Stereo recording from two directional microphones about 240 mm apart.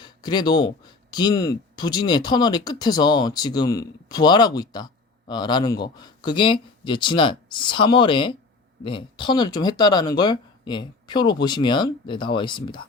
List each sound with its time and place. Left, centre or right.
0.0 s speech: centre